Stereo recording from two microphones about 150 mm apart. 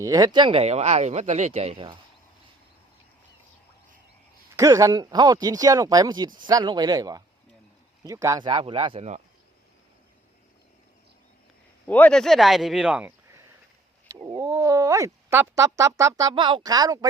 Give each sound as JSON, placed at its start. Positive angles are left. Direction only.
{"t": 0.0, "sound": "speech", "side_deg": -25}
{"t": 4.5, "sound": "speech", "side_deg": -20}
{"t": 11.9, "sound": "speech", "side_deg": 10}
{"t": 14.2, "sound": "speech", "side_deg": -25}
{"t": 16.3, "sound": "speech", "side_deg": -35}